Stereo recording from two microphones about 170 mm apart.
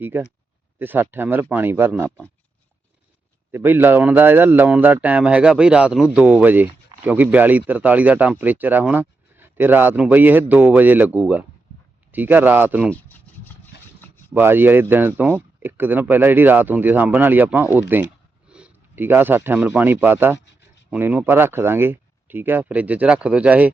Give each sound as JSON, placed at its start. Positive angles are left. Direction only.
{"t": 0.1, "sound": "a man's voice", "side_deg": -15}
{"t": 2.0, "sound": "speech", "side_deg": 5}
{"t": 3.5, "sound": "a man's voice", "side_deg": -10}
{"t": 12.9, "sound": "a sound", "side_deg": 10}
{"t": 14.3, "sound": "a man's voice", "side_deg": -10}